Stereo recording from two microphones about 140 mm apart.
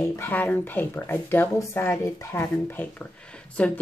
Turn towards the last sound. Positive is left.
turn(degrees=10)  # may be behind; listen again after turning